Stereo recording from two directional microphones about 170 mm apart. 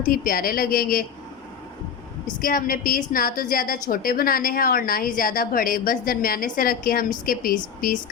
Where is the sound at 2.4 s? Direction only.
55° left (ahead or behind).